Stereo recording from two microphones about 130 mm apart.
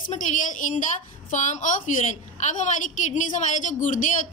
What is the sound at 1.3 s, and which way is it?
A woman's voice, 70° left (ahead or behind).